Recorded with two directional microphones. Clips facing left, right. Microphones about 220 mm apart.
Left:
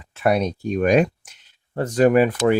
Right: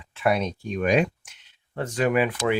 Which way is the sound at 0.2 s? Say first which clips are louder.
Left 4 dB; 40° left (ahead or behind).